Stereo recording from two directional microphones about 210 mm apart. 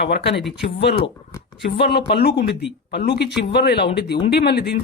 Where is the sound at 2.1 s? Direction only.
50° left (ahead or behind).